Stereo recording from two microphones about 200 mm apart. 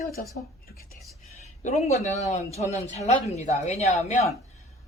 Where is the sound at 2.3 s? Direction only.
30° left (ahead or behind).